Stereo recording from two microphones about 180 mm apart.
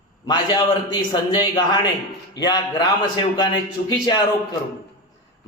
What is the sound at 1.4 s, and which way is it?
A man's voice, 25° left (ahead or behind).